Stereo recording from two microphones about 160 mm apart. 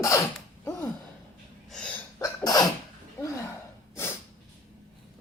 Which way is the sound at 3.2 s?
20° left (ahead or behind).